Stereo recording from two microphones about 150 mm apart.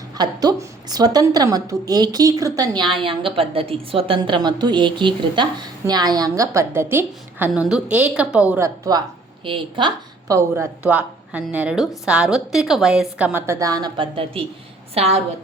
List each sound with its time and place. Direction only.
0.2 s a woman's voice: 25° right (ahead or behind)
10.3 s a woman's voice: 15° right (ahead or behind); by 15.2 s 45° right (ahead or behind)